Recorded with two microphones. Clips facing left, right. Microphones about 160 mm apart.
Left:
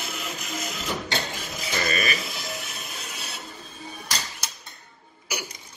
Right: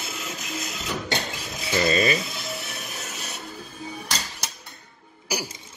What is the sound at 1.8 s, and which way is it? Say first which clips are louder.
Speech: right 7 dB; 25° right (ahead or behind).